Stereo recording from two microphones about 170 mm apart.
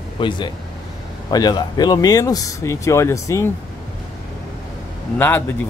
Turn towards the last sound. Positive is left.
turn(degrees=10)  # may be behind; listen again after turning